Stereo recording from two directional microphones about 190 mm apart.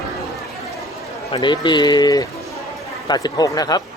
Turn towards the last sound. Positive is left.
turn(degrees=20)  # may be behind; listen again after turning